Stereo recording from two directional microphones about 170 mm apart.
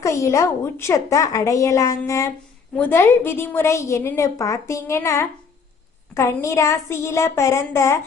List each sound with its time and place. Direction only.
0.0 s a woman's voice: 15° left (ahead or behind)